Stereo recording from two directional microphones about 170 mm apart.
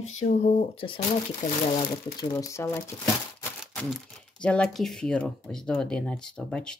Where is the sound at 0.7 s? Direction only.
30° left (ahead or behind).